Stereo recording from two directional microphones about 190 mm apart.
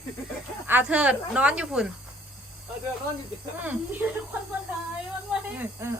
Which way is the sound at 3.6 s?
10° right (ahead or behind).